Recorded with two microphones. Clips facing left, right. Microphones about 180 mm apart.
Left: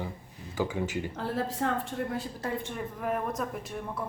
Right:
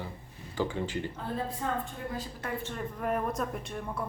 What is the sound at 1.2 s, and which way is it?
A woman's voice, 80° left.